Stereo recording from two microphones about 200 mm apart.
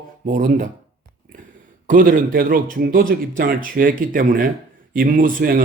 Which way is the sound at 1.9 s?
45° right (ahead or behind).